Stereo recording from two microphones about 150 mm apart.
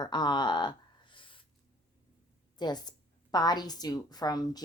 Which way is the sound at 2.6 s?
30° left (ahead or behind).